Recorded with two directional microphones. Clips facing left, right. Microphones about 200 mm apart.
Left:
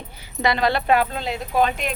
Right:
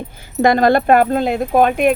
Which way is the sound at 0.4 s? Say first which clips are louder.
Right 8 dB; 50° right (ahead or behind).